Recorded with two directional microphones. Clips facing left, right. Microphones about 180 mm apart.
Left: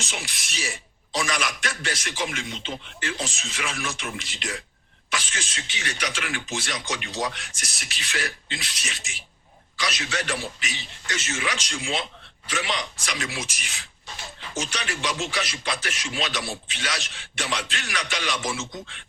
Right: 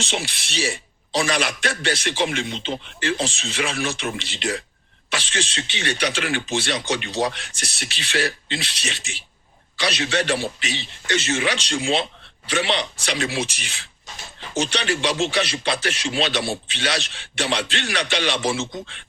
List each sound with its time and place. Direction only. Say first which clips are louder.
0.0 s speech: right 8 dB; 30° right (ahead or behind)